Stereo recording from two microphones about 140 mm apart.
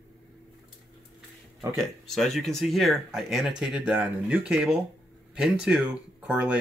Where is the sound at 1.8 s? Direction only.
Centre (ahead or behind).